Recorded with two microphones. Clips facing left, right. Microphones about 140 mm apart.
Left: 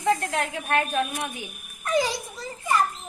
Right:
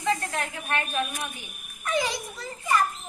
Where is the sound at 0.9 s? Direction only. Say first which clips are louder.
Left 3 dB; 30° left (ahead or behind).